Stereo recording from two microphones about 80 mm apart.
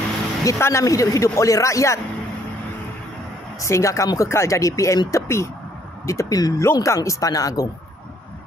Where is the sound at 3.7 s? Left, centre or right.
Left.